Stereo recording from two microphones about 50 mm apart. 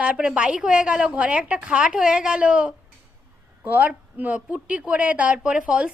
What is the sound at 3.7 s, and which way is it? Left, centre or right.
A woman's voice, right.